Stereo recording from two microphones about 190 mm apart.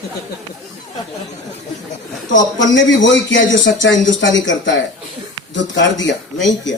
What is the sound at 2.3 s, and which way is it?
A man's voice, 75° left (ahead or behind).